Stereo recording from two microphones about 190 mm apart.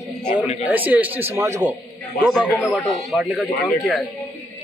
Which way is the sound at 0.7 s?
10° right (ahead or behind).